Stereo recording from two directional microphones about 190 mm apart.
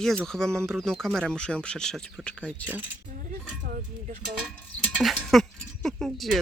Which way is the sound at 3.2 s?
45° right (ahead or behind).